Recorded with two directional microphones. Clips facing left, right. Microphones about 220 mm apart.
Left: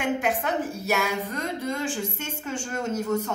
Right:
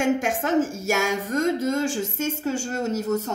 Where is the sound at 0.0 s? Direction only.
45° right (ahead or behind).